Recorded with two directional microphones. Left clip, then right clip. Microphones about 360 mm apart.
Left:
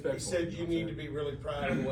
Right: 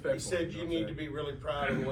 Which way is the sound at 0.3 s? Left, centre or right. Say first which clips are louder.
Left 1 dB; centre.